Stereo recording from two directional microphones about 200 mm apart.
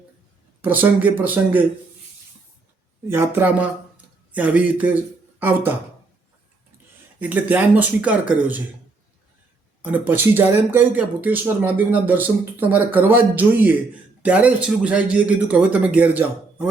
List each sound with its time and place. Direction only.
0.6 s speech: 10° right (ahead or behind)
3.1 s speech: 10° right (ahead or behind)
7.2 s speech: 10° right (ahead or behind)
9.8 s speech: 10° right (ahead or behind)